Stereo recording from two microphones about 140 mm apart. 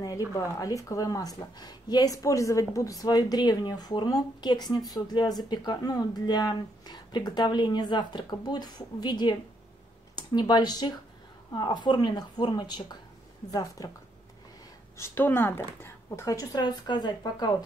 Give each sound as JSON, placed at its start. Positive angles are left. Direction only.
{"t": 0.3, "sound": "a woman's voice", "side_deg": 25}
{"t": 15.0, "sound": "a woman's voice", "side_deg": 15}